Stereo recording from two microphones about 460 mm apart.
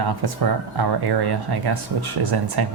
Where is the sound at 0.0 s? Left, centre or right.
Right.